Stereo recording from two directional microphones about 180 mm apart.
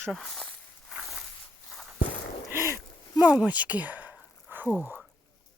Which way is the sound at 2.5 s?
15° right (ahead or behind).